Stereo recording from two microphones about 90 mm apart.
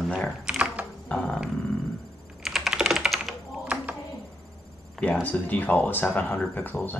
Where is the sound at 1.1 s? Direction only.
10° left (ahead or behind).